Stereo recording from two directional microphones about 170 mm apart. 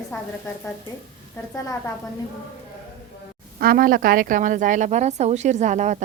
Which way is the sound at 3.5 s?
60° right (ahead or behind).